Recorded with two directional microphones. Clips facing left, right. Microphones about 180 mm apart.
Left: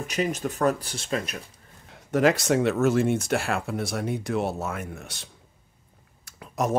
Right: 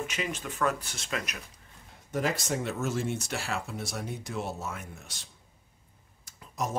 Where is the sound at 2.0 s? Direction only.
75° left (ahead or behind).